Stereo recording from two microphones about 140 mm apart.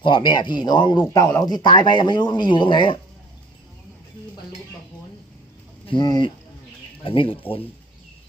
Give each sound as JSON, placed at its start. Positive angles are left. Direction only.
{"t": 0.0, "sound": "speech", "side_deg": 35}
{"t": 5.8, "sound": "speech", "side_deg": 35}